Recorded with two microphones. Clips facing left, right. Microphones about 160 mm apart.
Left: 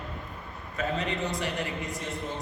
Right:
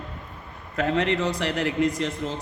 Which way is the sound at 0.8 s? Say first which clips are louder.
Right 7 dB; 75° right (ahead or behind).